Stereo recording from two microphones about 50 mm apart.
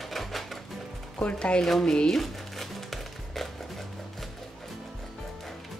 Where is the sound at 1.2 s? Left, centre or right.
Centre.